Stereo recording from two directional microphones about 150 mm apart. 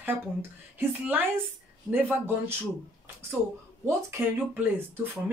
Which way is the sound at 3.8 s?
20° right (ahead or behind).